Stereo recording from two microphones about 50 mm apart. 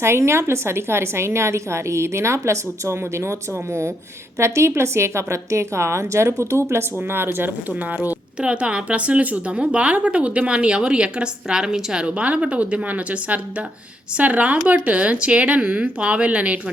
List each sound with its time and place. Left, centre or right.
0.0 s a woman's voice: right
7.8 s speech: right
8.4 s speech: right